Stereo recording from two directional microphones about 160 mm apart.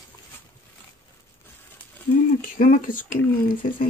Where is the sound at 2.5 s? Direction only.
55° left (ahead or behind).